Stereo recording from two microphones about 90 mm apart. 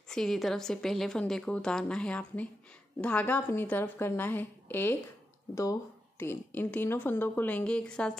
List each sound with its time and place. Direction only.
0.1 s a woman's voice: 5° left (ahead or behind); by 4.9 s 25° left (ahead or behind)
5.5 s a woman's voice: 40° left (ahead or behind); by 8.2 s 10° left (ahead or behind)